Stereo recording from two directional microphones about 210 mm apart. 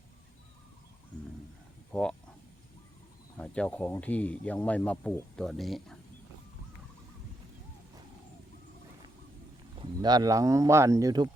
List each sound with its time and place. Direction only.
1.9 s speech: 5° left (ahead or behind)
3.3 s speech: 5° left (ahead or behind)
9.8 s speech: 20° right (ahead or behind)